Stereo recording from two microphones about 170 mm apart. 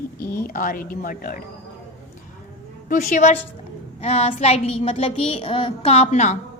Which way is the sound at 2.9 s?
45° left (ahead or behind).